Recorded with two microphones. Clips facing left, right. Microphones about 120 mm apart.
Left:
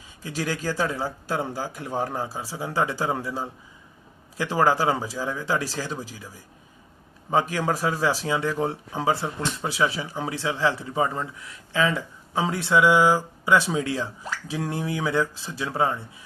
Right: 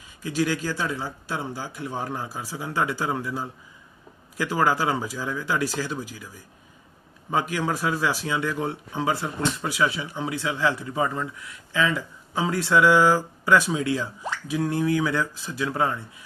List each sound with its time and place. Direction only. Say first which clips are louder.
0.2 s speech: right 4 dB; 35° left (ahead or behind)